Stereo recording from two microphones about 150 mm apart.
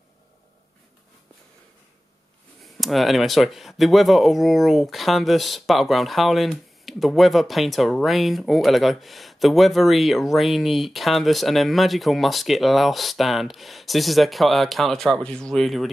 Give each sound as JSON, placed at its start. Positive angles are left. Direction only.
{"t": 2.6, "sound": "speech", "side_deg": 0}